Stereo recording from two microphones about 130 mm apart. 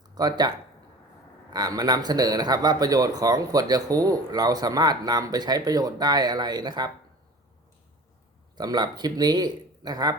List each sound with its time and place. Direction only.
0.1 s speech: 30° right (ahead or behind)
1.5 s speech: 30° right (ahead or behind)
8.5 s speech: 30° right (ahead or behind)